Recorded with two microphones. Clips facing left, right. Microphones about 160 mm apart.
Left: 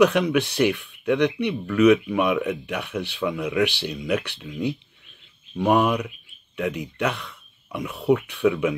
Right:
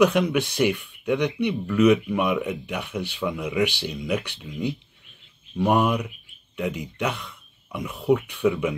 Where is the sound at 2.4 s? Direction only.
55° left (ahead or behind).